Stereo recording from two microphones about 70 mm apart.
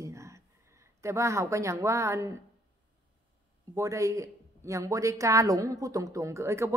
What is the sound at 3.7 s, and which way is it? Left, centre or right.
A woman's voice, right.